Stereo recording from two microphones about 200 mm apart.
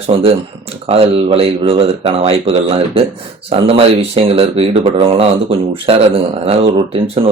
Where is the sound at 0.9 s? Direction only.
30° right (ahead or behind).